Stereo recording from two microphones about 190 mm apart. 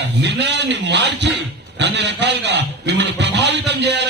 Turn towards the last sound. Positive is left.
turn(degrees=-65)  # may be behind; listen again after turning